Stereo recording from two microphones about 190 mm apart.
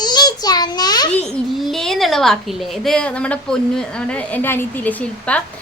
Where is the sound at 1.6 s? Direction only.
Centre (ahead or behind).